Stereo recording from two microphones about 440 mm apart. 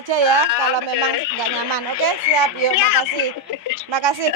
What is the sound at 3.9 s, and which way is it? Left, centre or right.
Speech, right.